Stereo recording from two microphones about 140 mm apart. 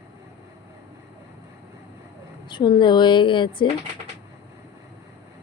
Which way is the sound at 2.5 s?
35° left (ahead or behind).